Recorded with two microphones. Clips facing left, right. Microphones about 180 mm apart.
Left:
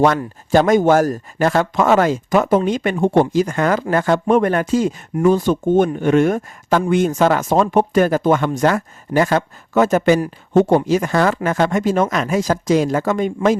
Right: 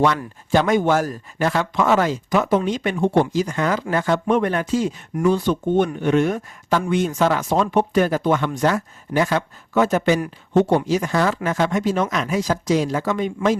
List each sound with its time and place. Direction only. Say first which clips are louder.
0.5 s speech: left 5 dB; 40° left (ahead or behind)